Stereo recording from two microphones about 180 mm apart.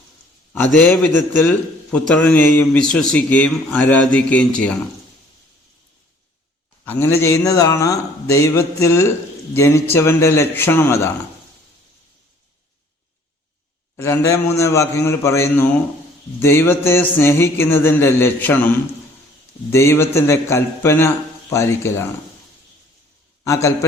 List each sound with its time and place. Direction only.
0.5 s a man's voice: 10° left (ahead or behind)
6.8 s a man's voice: 15° left (ahead or behind)
13.9 s a man's voice: 15° left (ahead or behind)
23.4 s a man's voice: 15° left (ahead or behind)